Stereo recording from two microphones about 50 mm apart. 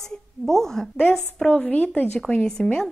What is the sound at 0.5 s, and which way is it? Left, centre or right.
Speech, centre.